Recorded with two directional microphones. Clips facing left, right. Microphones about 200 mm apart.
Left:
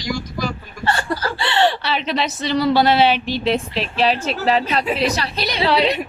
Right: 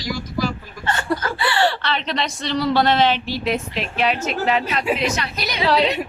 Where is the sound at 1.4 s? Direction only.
25° left (ahead or behind).